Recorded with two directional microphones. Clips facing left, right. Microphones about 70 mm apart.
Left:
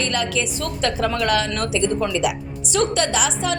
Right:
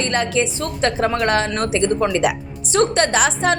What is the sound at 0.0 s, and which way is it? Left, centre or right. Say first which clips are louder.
A woman's voice: right 3 dB; right.